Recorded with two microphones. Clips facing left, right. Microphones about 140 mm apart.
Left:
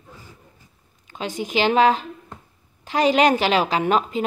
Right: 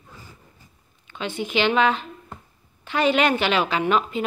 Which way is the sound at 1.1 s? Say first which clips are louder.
Left 1 dB; 40° left (ahead or behind).